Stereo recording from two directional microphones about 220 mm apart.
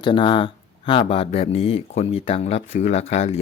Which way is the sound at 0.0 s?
20° left (ahead or behind).